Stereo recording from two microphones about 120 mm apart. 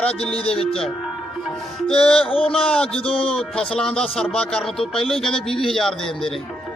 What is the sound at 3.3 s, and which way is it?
Speech, 5° left (ahead or behind).